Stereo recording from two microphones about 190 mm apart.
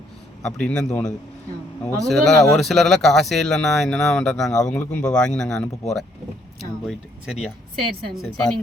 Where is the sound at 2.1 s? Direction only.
Centre (ahead or behind).